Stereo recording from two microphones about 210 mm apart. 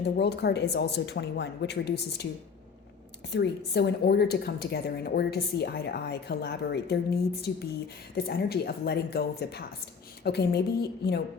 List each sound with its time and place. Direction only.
0.0 s a woman's voice: 50° left (ahead or behind)
3.3 s a woman's voice: 50° left (ahead or behind)